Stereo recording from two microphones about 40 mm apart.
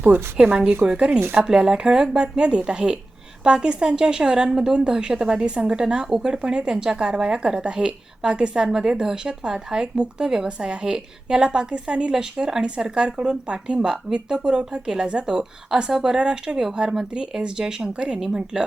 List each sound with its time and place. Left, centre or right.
0.3 s a woman's voice: right
12.1 s a woman's voice: centre